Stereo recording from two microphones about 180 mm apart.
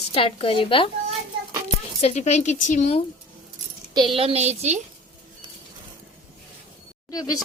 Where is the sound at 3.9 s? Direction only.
30° right (ahead or behind).